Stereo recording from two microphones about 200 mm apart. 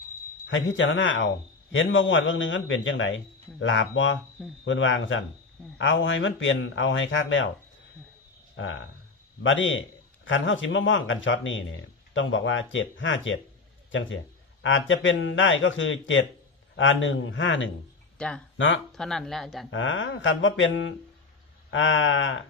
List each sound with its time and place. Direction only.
0.4 s speech: 70° left (ahead or behind)
8.6 s speech: 65° left (ahead or behind)
14.6 s speech: 70° left (ahead or behind)
18.2 s speech: 5° left (ahead or behind)
18.5 s speech: 70° left (ahead or behind)
18.9 s speech: centre (ahead or behind)
19.7 s speech: 70° left (ahead or behind)